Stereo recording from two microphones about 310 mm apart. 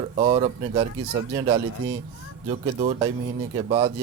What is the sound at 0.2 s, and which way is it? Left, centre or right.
A man's voice, centre.